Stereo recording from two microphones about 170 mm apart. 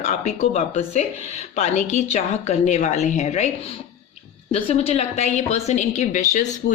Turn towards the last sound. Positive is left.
turn(degrees=45)  # may be behind; listen again after turning